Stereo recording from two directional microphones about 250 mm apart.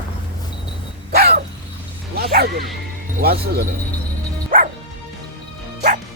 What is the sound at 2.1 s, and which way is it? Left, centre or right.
Bow-wow, right.